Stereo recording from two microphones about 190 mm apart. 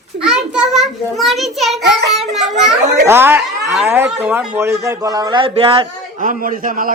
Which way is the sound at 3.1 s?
10° right (ahead or behind).